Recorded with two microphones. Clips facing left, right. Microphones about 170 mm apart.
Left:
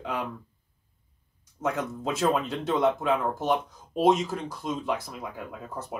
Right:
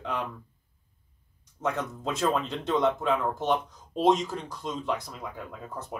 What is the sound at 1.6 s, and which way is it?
Speech, 5° left (ahead or behind).